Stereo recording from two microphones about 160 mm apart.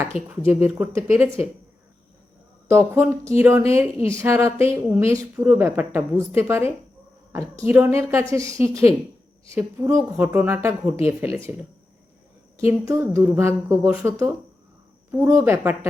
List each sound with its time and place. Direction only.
0.3 s speech: 10° right (ahead or behind)
2.6 s speech: 15° right (ahead or behind)
13.1 s speech: 15° right (ahead or behind)